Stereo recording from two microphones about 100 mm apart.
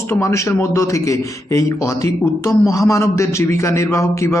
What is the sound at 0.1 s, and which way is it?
A man's voice, 30° left (ahead or behind).